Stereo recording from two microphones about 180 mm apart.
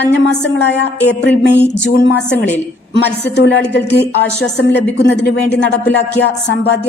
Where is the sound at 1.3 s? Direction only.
70° left (ahead or behind).